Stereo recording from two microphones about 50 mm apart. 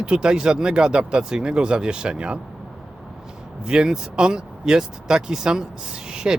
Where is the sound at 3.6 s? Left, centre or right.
Centre.